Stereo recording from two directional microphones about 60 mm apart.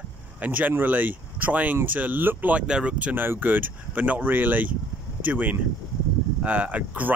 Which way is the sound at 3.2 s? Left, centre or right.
Right.